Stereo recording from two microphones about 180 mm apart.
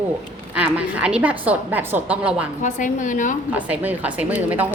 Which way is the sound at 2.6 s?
45° left (ahead or behind).